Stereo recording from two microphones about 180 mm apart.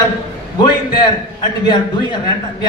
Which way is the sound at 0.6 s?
25° left (ahead or behind).